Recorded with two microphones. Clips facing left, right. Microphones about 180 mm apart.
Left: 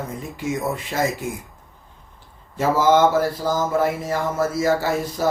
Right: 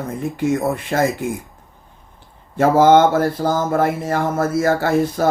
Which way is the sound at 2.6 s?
55° right (ahead or behind).